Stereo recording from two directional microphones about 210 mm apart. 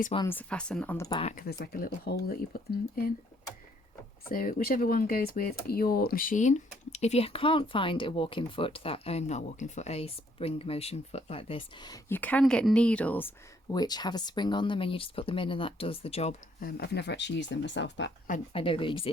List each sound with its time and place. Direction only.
0.3 s speech: 5° left (ahead or behind)
1.4 s speech: 45° left (ahead or behind)
4.3 s speech: 40° left (ahead or behind)
16.6 s speech: 45° left (ahead or behind)
18.5 s speech: 25° left (ahead or behind)